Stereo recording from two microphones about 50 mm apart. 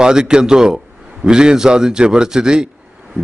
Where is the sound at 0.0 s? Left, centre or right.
Centre.